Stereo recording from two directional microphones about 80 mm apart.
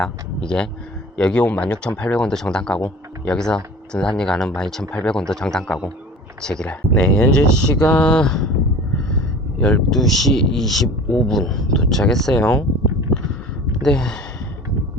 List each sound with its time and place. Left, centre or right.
0.0 s speech: centre
9.6 s speech: centre
9.9 s speech: centre
12.4 s speech: centre
13.8 s speech: centre